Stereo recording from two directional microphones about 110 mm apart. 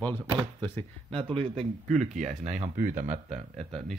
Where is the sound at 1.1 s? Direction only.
55° right (ahead or behind).